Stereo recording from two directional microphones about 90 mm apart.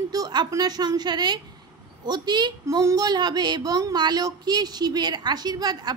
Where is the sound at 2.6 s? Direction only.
40° right (ahead or behind).